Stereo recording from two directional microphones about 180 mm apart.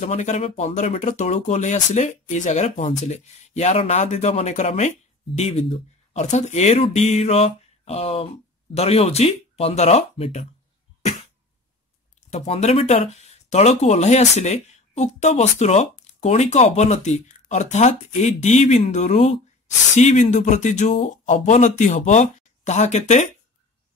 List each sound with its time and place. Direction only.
0.0 s speech: 40° left (ahead or behind)
12.3 s speech: 35° left (ahead or behind)